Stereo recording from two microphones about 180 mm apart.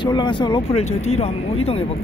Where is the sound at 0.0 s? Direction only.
25° left (ahead or behind).